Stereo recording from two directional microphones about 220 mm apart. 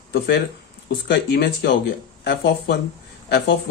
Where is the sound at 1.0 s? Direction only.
50° left (ahead or behind).